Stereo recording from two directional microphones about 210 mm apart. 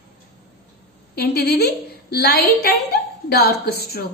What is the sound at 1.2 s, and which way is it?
A woman's voice, 50° left (ahead or behind).